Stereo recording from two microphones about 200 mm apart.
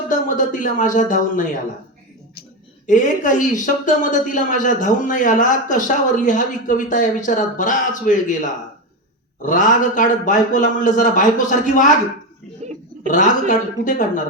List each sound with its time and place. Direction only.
0.1 s speech: 40° left (ahead or behind)
2.8 s a man's voice: 40° left (ahead or behind)
9.4 s a man's voice: 40° left (ahead or behind)
13.0 s a sound: 40° left (ahead or behind)
13.5 s a man's voice: 40° left (ahead or behind)